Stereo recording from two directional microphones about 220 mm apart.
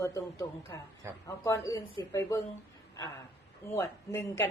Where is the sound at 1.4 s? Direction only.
15° left (ahead or behind).